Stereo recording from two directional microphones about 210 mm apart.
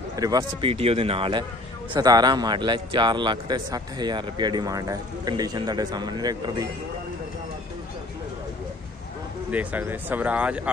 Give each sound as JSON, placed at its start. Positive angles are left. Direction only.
{"t": 0.1, "sound": "a man's voice", "side_deg": -15}
{"t": 9.5, "sound": "speech", "side_deg": -5}